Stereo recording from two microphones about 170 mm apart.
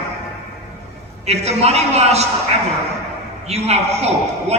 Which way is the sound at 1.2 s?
40° right (ahead or behind).